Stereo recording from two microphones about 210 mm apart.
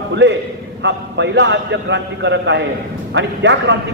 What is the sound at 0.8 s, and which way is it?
A man's voice, 55° right (ahead or behind).